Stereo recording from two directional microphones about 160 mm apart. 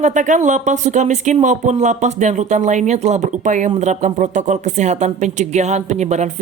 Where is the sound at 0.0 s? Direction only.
50° right (ahead or behind).